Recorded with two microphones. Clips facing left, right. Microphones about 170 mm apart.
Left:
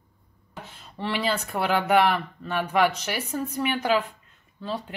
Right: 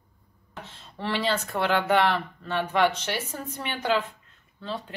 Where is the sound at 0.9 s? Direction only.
5° left (ahead or behind).